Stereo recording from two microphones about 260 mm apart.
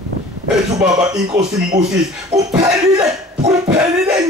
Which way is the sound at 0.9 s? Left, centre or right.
Centre.